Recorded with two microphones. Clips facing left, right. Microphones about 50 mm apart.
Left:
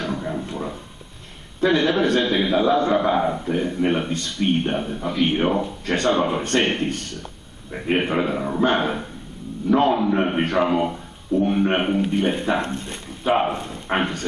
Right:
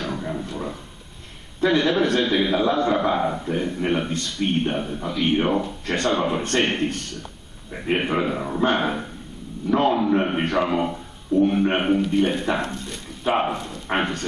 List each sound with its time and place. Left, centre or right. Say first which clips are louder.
0.0 s a sound: left 2 dB; centre
1.8 s a man's voice: left 1 dB; centre
12.6 s speech: left 2 dB; left
13.2 s a man's voice: left 2 dB; centre